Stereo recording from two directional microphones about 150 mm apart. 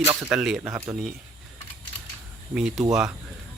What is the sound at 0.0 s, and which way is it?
Speech, 15° right (ahead or behind).